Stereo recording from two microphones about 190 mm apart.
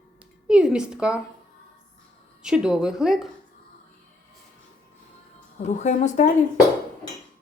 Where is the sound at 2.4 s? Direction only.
5° right (ahead or behind).